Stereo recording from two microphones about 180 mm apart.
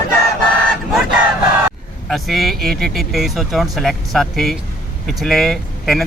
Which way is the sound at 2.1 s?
Centre (ahead or behind).